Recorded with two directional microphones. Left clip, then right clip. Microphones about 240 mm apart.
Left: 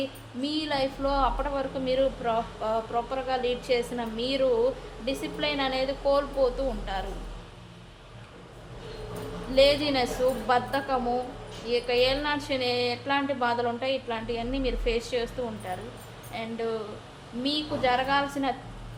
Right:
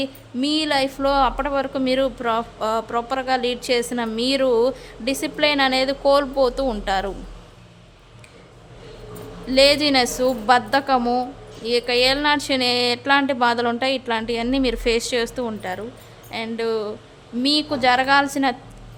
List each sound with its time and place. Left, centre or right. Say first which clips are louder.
0.4 s a woman's voice: right 8 dB; right
9.6 s a woman's voice: right 6 dB; right